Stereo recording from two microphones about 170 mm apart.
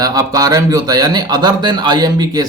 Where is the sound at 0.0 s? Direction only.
20° right (ahead or behind).